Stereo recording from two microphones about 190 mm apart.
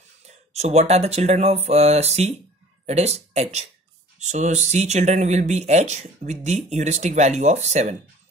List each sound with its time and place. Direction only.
0.5 s speech: 35° right (ahead or behind)